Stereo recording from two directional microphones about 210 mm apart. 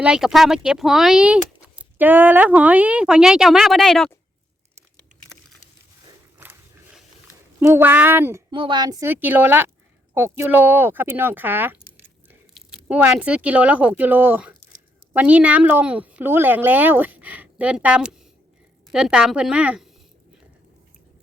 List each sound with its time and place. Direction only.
0.0 s speech: 5° right (ahead or behind)
6.4 s a sound: 10° right (ahead or behind)
7.6 s a woman's voice: 10° right (ahead or behind)
8.5 s a woman's voice: 20° right (ahead or behind); by 19.9 s 5° right (ahead or behind)